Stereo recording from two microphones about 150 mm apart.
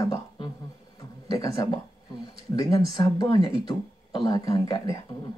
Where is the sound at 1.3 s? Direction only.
20° left (ahead or behind).